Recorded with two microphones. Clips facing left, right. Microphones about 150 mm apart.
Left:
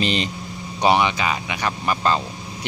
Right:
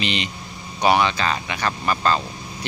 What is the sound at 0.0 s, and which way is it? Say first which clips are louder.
Speech: left 3 dB; 40° left (ahead or behind).